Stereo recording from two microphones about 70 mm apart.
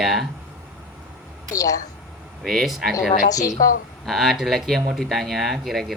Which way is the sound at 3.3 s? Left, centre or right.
Left.